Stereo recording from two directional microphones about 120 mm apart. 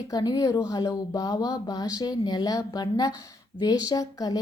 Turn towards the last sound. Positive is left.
turn(degrees=30)  # may be behind; listen again after turning